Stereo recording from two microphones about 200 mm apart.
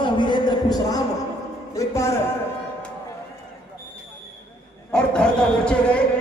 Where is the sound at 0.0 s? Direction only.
25° left (ahead or behind).